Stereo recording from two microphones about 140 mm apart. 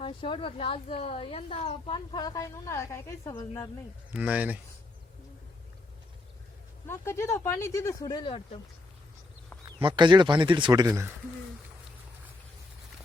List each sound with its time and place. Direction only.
0.0 s speech: 35° left (ahead or behind)
2.1 s speech: 25° left (ahead or behind)
4.2 s speech: 10° right (ahead or behind)
6.8 s speech: 20° left (ahead or behind); by 8.6 s 35° left (ahead or behind)
9.8 s speech: 35° right (ahead or behind)